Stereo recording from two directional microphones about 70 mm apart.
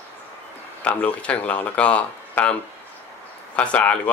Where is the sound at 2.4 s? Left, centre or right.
Left.